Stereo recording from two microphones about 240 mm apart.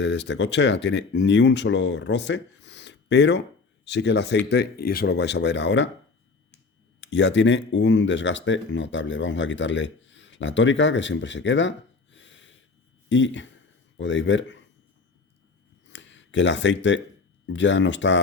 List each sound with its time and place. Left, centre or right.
0.0 s speech: left
7.0 s speech: left
12.1 s snort: left
13.1 s speech: left
15.9 s a sound: left
17.4 s speech: left